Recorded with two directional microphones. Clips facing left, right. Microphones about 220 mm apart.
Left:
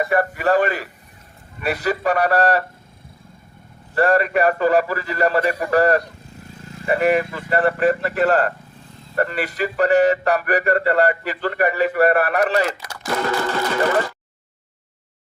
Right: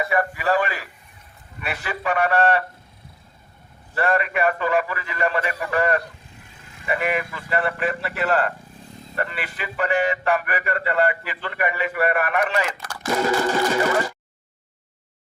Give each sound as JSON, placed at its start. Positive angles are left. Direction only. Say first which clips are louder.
{"t": 0.0, "sound": "speech", "louder": "left 4 dB", "side_deg": 40}
{"t": 3.9, "sound": "speech", "louder": "left 5 dB", "side_deg": 40}
{"t": 13.1, "sound": "a sound", "louder": "right 1 dB", "side_deg": -10}